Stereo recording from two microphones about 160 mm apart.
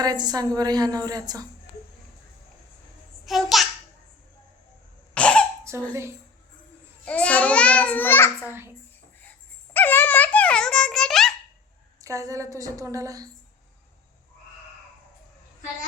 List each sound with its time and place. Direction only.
0.0 s a woman's voice: 25° right (ahead or behind)
3.2 s a child's voice: centre (ahead or behind)
5.1 s cough: 5° left (ahead or behind)
5.7 s a child's voice: 15° right (ahead or behind)
7.0 s babbling: 10° left (ahead or behind)
8.4 s a child's voice: 15° right (ahead or behind)
9.7 s giggle: 10° left (ahead or behind)
11.9 s a woman's voice: 20° right (ahead or behind)